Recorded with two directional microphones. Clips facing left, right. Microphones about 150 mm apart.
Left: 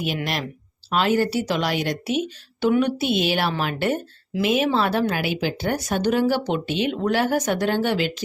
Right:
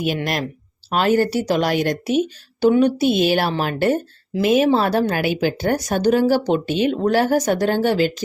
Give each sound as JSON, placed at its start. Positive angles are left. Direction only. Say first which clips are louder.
{"t": 0.9, "sound": "a woman's voice", "louder": "right 3 dB", "side_deg": -45}